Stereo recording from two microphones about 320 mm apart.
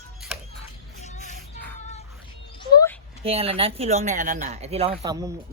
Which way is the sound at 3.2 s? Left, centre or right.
Centre.